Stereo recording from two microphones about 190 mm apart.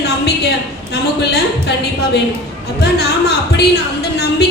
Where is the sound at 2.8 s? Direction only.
60° left (ahead or behind).